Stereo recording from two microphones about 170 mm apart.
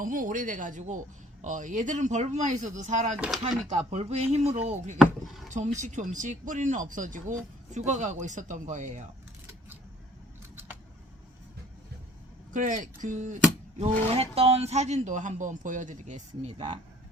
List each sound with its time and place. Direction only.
0.0 s speech: 50° right (ahead or behind)
3.2 s speech: 5° right (ahead or behind)
3.7 s speech: 40° right (ahead or behind)
4.9 s speech: centre (ahead or behind)
5.5 s speech: 45° right (ahead or behind)
10.5 s vehicle: 10° right (ahead or behind)
12.5 s speech: 45° right (ahead or behind)